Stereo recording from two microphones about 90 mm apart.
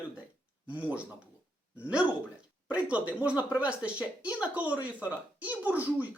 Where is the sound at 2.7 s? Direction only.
15° right (ahead or behind).